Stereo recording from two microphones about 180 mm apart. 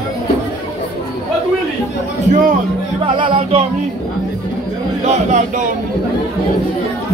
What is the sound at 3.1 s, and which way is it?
Music, 30° right (ahead or behind).